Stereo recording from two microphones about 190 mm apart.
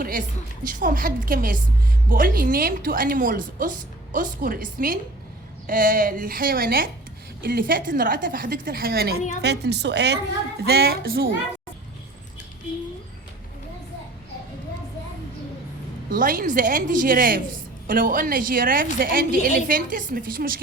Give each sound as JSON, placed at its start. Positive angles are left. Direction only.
{"t": 0.6, "sound": "a woman's voice", "side_deg": -45}
{"t": 16.0, "sound": "a woman's voice", "side_deg": -45}